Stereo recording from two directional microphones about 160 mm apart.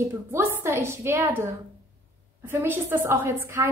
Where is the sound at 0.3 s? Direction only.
15° right (ahead or behind).